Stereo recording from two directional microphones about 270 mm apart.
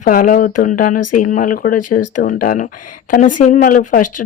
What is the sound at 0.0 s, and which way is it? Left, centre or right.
A woman's voice, left.